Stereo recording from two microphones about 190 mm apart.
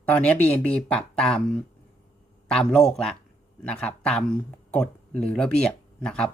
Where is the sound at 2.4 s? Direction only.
5° left (ahead or behind).